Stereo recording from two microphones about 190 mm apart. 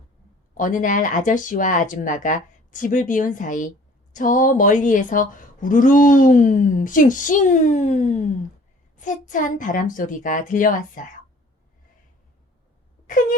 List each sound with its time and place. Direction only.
0.5 s a woman's voice: 45° left (ahead or behind)